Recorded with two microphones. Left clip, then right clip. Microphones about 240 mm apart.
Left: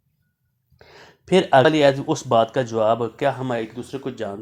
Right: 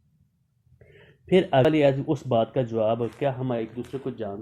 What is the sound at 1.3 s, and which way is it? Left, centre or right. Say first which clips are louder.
Speech: left 5 dB; centre.